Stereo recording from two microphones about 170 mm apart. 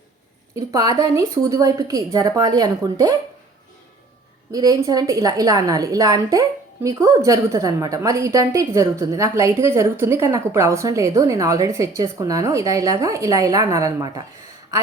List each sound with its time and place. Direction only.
0.5 s a woman's voice: 20° right (ahead or behind)
4.5 s a woman's voice: 20° right (ahead or behind)